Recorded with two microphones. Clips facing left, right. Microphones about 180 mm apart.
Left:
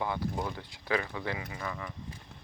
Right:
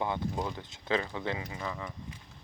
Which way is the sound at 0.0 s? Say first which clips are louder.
Right 1 dB; 20° right (ahead or behind).